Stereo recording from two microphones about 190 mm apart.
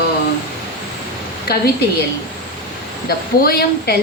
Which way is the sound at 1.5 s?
55° left (ahead or behind).